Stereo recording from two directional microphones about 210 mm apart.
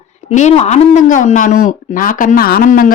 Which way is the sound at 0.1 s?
35° left (ahead or behind).